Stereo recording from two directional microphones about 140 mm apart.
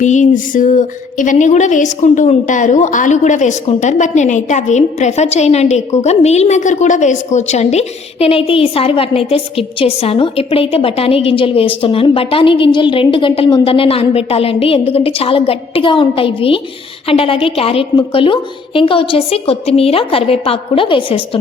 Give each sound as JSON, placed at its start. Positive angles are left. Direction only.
{"t": 0.0, "sound": "a woman's voice", "side_deg": 60}